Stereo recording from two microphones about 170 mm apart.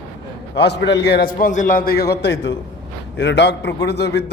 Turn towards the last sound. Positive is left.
turn(degrees=80)